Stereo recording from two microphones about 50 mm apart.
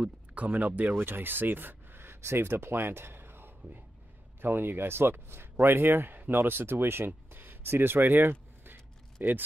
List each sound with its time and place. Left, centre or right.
0.0 s speech: right
0.9 s speech: right
7.2 s a sound: right
9.2 s speech: right